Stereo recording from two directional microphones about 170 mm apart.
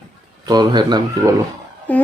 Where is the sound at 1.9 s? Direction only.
10° left (ahead or behind).